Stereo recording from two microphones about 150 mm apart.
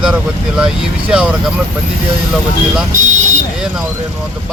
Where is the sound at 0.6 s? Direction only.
5° right (ahead or behind).